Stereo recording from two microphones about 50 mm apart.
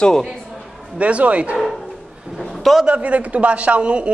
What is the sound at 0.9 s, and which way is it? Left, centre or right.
Speech, right.